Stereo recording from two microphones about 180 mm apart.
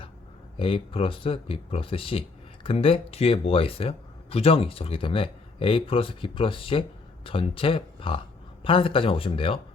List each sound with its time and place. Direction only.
0.5 s speech: 30° left (ahead or behind)